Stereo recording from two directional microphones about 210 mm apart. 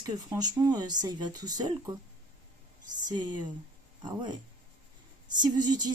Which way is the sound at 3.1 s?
20° right (ahead or behind).